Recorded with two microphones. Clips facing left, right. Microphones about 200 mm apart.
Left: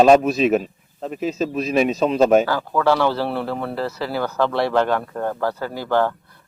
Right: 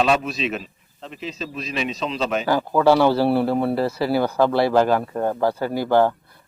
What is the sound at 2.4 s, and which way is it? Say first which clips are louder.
Speech: right 2 dB; 15° right (ahead or behind).